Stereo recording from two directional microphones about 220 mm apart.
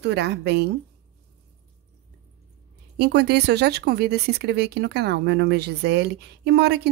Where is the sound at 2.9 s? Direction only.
50° right (ahead or behind).